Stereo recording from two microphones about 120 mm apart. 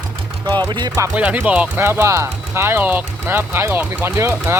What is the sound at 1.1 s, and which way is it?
Speech, 10° right (ahead or behind).